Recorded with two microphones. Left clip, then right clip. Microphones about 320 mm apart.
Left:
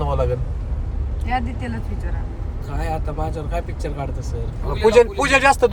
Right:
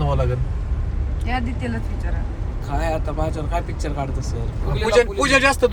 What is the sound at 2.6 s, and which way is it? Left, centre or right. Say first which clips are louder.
Speech: right 3 dB; centre.